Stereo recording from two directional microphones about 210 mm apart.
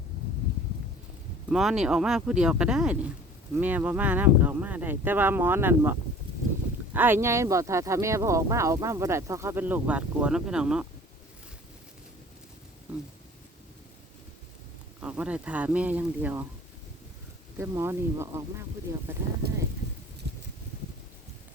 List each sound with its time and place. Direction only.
1.5 s speech: 5° right (ahead or behind)
6.9 s speech: 10° right (ahead or behind)
15.0 s speech: 5° right (ahead or behind)
17.6 s speech: 10° right (ahead or behind)
19.4 s speech: 50° right (ahead or behind)